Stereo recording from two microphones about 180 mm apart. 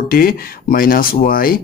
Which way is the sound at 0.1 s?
55° left (ahead or behind).